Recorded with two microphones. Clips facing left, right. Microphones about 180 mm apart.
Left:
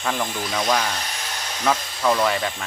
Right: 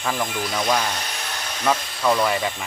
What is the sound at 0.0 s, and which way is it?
Speech, centre (ahead or behind).